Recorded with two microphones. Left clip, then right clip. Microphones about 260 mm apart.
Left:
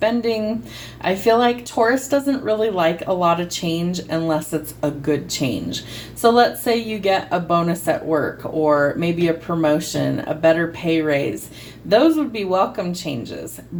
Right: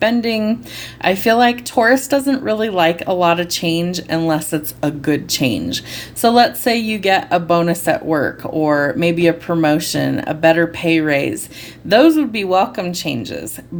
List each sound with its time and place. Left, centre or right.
0.0 s speech: right